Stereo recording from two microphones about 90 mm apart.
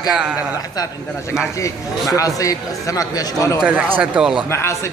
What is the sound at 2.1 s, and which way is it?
Speech, 40° left (ahead or behind).